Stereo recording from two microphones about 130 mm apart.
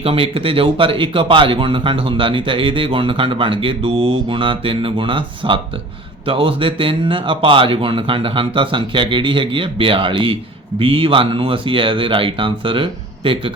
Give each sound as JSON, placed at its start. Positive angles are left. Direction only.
{"t": 0.0, "sound": "speech", "side_deg": -45}